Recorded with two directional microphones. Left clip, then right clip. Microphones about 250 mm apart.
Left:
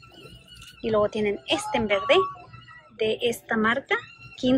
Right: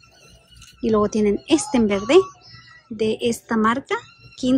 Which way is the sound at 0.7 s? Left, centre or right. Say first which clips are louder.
Right 4 dB; right.